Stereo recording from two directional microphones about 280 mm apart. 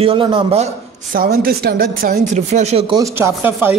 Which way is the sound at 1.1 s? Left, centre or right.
Right.